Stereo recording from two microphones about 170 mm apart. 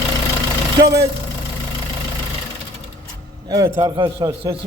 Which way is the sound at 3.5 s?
25° right (ahead or behind).